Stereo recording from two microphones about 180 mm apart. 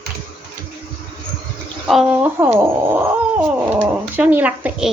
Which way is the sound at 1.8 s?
5° right (ahead or behind).